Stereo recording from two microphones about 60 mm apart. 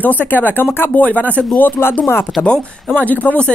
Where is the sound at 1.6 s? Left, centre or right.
Left.